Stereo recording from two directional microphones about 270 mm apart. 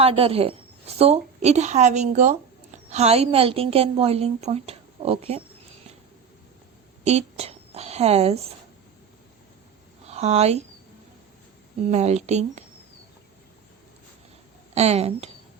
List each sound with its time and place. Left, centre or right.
0.0 s a woman's voice: right
7.0 s a sound: right
10.1 s speech: right
11.9 s a woman's voice: right
14.8 s a woman's voice: right